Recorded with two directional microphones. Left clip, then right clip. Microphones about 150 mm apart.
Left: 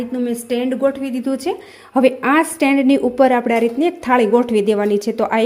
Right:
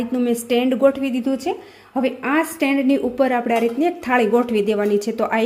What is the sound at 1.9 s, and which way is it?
A woman's voice, 35° left (ahead or behind).